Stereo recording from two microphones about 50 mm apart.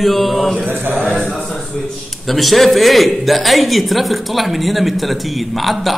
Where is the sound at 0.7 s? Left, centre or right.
Right.